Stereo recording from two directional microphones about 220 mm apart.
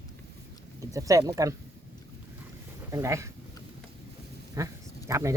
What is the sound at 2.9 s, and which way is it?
Speech, 15° right (ahead or behind).